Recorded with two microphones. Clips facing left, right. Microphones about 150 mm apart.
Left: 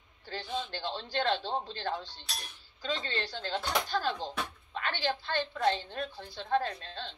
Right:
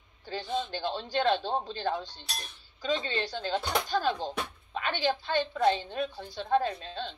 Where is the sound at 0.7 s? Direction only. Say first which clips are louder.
Right 4 dB; 15° right (ahead or behind).